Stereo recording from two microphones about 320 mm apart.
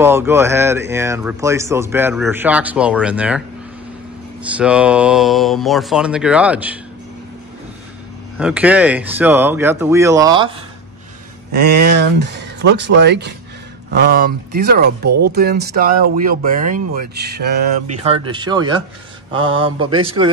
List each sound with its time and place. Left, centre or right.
0.0 s speech: centre
8.4 s speech: centre
11.5 s speech: right
18.0 s speech: centre